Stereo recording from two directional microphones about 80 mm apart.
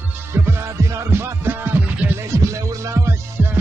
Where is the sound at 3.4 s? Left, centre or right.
Right.